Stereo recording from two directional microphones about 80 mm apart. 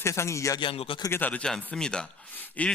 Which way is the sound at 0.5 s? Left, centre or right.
Left.